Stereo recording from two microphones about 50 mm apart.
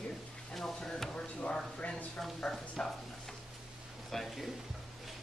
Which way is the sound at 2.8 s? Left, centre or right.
Centre.